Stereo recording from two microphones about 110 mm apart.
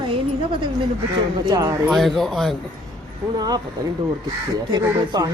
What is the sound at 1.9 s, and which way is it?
Speech, centre (ahead or behind).